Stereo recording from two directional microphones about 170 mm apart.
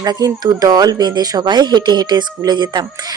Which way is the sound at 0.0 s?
20° right (ahead or behind).